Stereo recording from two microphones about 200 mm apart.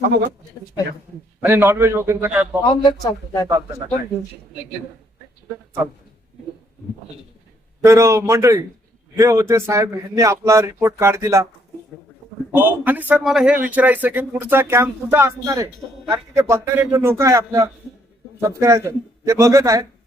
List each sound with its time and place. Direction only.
1.5 s speech: 10° right (ahead or behind)
2.6 s speech: 20° left (ahead or behind)
7.9 s speech: 15° right (ahead or behind)
12.5 s speech: 10° right (ahead or behind)